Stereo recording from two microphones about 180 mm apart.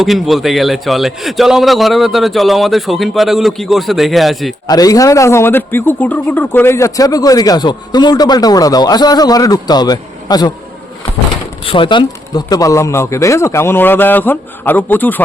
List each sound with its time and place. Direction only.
0.0 s a man's voice: centre (ahead or behind)
4.6 s a man's voice: 20° left (ahead or behind)
11.6 s speech: 30° left (ahead or behind); by 15.2 s 10° left (ahead or behind)